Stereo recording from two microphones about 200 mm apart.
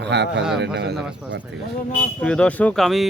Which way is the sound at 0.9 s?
5° right (ahead or behind).